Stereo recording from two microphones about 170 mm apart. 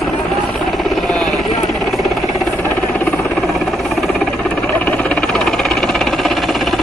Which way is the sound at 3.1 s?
Centre (ahead or behind).